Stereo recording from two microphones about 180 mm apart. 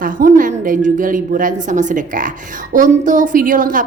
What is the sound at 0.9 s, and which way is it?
A woman's voice, 45° right (ahead or behind).